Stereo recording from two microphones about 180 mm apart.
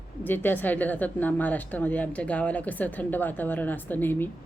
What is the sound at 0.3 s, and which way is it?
A woman's voice, 10° left (ahead or behind).